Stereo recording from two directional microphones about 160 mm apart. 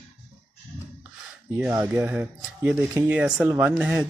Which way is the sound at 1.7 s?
15° right (ahead or behind).